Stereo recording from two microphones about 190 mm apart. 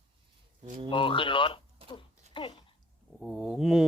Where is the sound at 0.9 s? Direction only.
25° left (ahead or behind).